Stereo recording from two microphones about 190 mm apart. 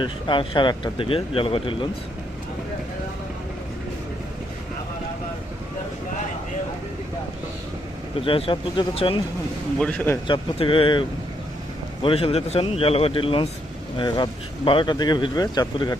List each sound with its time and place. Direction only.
0.0 s speech: 25° left (ahead or behind)
8.2 s speech: 30° left (ahead or behind)
9.7 s speech: 5° left (ahead or behind)
10.2 s speech: 25° left (ahead or behind)
12.0 s speech: 30° left (ahead or behind)